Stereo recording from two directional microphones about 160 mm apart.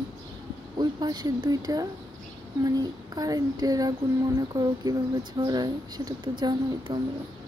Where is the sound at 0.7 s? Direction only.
25° right (ahead or behind).